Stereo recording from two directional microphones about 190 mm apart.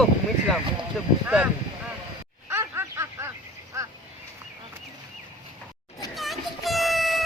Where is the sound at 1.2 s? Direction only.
10° right (ahead or behind).